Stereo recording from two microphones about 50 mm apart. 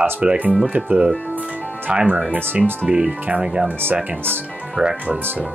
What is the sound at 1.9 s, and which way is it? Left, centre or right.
Speech, centre.